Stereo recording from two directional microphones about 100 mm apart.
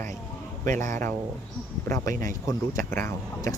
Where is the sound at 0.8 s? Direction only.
25° left (ahead or behind).